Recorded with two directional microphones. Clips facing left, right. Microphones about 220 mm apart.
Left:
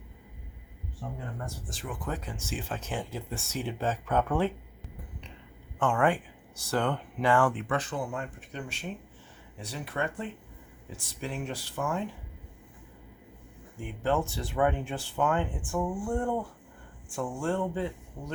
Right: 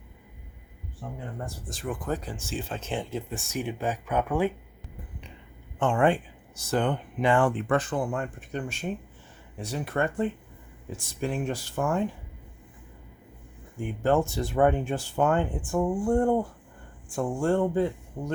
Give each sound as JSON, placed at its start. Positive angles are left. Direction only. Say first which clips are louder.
{"t": 1.0, "sound": "speech", "louder": "right 1 dB", "side_deg": -10}
{"t": 1.5, "sound": "speech", "louder": "right 5 dB", "side_deg": -45}
{"t": 5.8, "sound": "speech", "louder": "right 3 dB", "side_deg": -25}
{"t": 7.5, "sound": "speech", "louder": "right 5 dB", "side_deg": -50}
{"t": 13.7, "sound": "speech", "louder": "right 5 dB", "side_deg": -45}